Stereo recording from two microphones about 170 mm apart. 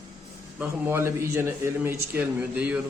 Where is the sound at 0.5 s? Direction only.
10° right (ahead or behind).